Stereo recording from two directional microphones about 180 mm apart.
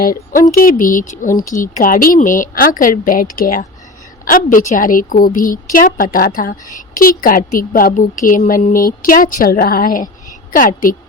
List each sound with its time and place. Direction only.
0.0 s a woman's voice: 50° left (ahead or behind)